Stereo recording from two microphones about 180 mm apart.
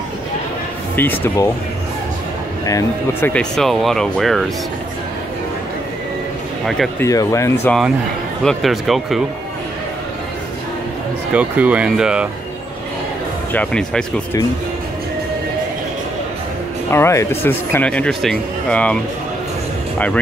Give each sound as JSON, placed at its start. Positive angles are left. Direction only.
{"t": 0.9, "sound": "speech", "side_deg": 10}
{"t": 2.6, "sound": "speech", "side_deg": 15}
{"t": 7.0, "sound": "speech", "side_deg": 20}
{"t": 8.5, "sound": "speech", "side_deg": 0}
{"t": 11.3, "sound": "speech", "side_deg": -10}
{"t": 13.5, "sound": "speech", "side_deg": 5}
{"t": 16.9, "sound": "speech", "side_deg": 15}